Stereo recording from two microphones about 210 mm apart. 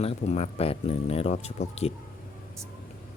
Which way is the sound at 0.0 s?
30° left (ahead or behind).